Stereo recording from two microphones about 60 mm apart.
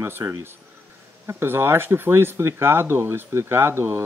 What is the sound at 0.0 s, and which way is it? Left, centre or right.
Speech, right.